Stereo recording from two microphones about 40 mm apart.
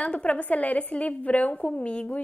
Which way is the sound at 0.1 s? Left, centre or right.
Left.